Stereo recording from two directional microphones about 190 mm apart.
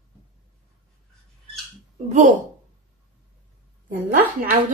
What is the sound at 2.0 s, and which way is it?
Speech, 40° right (ahead or behind).